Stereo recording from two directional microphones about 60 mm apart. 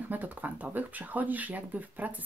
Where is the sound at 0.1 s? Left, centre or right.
Right.